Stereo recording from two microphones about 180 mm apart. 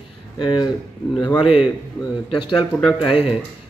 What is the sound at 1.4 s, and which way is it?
Speech, 35° left (ahead or behind).